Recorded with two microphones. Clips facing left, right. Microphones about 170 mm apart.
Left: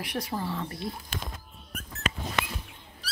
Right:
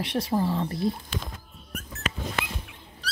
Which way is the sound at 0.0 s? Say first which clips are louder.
Right 6 dB; 25° right (ahead or behind).